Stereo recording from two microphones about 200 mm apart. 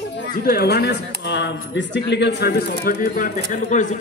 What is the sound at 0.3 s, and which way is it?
A man's voice, 50° left (ahead or behind).